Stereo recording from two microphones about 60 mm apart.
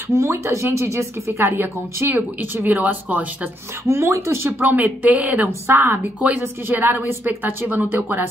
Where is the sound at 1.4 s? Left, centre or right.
Right.